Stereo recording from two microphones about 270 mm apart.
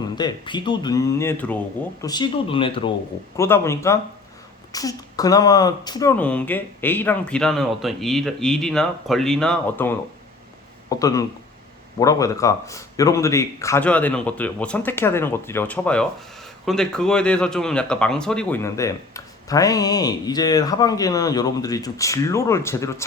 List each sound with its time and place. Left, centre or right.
0.2 s speech: centre